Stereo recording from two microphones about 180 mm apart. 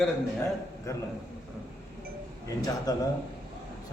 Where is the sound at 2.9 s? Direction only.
20° left (ahead or behind).